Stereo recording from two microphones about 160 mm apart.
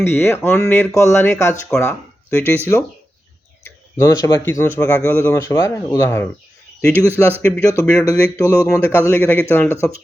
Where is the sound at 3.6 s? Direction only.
20° left (ahead or behind).